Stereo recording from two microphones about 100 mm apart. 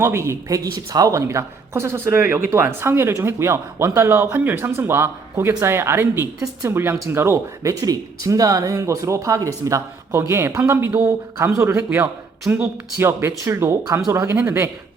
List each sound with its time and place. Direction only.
0.0 s a woman's voice: 25° right (ahead or behind)